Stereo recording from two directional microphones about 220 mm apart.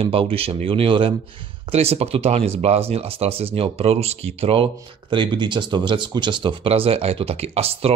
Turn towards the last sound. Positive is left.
turn(degrees=-25)  # may be behind; listen again after turning